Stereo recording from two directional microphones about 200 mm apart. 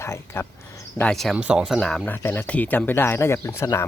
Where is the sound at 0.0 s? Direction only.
15° left (ahead or behind).